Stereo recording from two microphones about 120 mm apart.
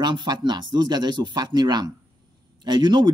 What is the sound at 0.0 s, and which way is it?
Speech, 40° right (ahead or behind).